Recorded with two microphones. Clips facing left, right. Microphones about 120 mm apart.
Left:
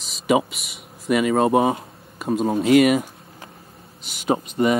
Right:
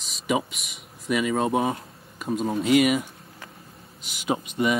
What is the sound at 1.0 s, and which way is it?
Speech, 55° left (ahead or behind).